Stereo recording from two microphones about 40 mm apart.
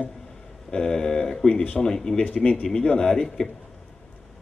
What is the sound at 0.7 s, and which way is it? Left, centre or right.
A man's voice, centre.